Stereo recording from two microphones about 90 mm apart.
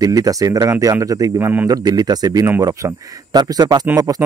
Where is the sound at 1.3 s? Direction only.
25° right (ahead or behind).